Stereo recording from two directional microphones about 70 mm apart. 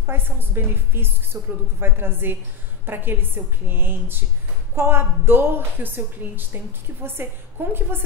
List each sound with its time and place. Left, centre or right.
0.0 s a woman's voice: right